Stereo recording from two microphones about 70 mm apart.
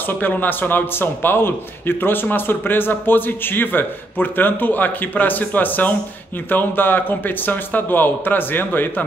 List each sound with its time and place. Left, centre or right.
0.0 s a man's voice: left